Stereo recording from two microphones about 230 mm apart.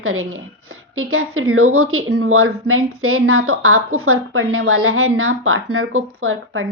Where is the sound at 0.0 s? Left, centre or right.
Right.